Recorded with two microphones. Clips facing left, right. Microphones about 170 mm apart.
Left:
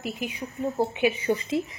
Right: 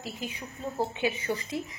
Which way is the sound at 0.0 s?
15° left (ahead or behind).